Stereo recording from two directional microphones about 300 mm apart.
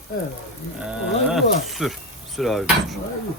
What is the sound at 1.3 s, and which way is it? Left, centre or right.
Speech, centre.